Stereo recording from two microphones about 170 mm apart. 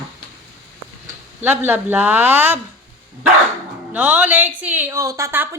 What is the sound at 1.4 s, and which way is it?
A woman's voice, 10° right (ahead or behind).